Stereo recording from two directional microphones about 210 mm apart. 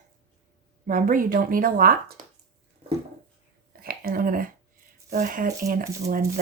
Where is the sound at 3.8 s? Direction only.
45° right (ahead or behind).